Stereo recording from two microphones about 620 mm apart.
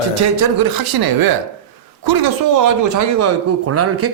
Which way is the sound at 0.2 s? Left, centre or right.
Right.